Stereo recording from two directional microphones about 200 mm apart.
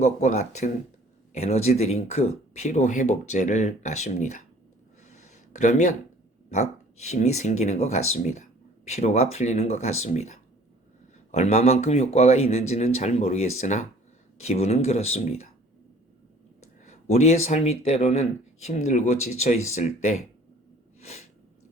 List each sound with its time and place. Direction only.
0.0 s speech: 35° left (ahead or behind)
5.1 s a sound: 35° left (ahead or behind)
6.5 s speech: 35° left (ahead or behind)
16.8 s speech: 35° left (ahead or behind)
21.0 s snort: 30° left (ahead or behind)